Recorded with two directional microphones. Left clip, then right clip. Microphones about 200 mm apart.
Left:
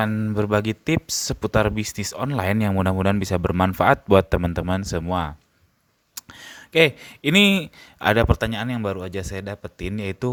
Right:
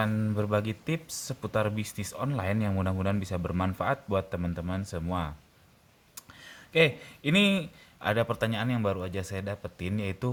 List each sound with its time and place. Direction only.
0.0 s speech: 35° left (ahead or behind)